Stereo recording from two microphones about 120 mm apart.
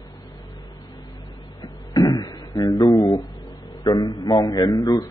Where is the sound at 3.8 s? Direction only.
35° left (ahead or behind).